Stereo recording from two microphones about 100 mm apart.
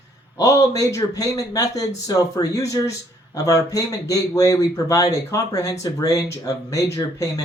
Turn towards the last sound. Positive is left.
turn(degrees=35)  # may be behind; listen again after turning